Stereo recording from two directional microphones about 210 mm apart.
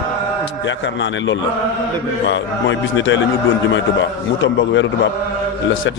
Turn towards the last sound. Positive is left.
turn(degrees=60)  # may be behind; listen again after turning